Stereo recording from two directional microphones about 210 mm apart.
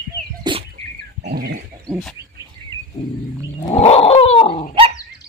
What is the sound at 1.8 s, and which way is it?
Wild animals, centre (ahead or behind).